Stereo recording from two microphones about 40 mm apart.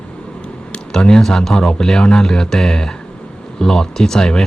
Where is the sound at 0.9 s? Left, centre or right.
Centre.